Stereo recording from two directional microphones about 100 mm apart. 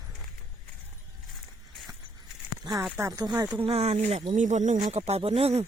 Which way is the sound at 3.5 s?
70° right (ahead or behind).